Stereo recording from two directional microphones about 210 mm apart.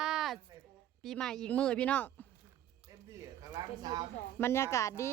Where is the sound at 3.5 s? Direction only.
20° right (ahead or behind).